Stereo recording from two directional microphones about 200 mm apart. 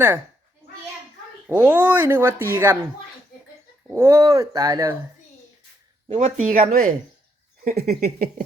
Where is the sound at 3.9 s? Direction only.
15° right (ahead or behind).